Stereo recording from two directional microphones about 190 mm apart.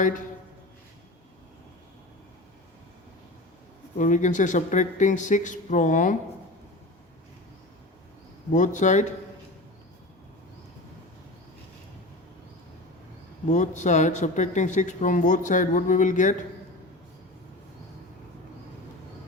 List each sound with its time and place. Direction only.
3.9 s speech: 40° left (ahead or behind)
8.5 s speech: 40° left (ahead or behind)
13.5 s speech: 40° left (ahead or behind)